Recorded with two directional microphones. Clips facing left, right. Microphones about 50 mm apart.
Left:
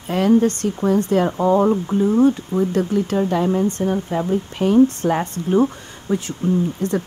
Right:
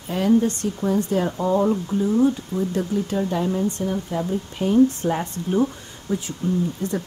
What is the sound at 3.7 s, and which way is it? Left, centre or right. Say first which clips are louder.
Speech: left 4 dB; left.